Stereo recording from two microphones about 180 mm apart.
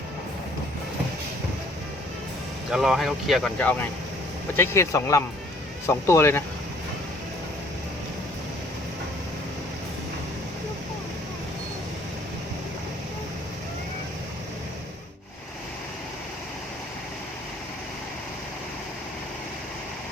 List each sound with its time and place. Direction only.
2.6 s speech: 5° right (ahead or behind); by 6.4 s 15° left (ahead or behind)